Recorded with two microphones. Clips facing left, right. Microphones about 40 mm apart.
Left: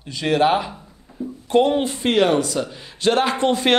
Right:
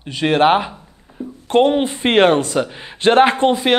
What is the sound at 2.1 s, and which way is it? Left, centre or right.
Speech, right.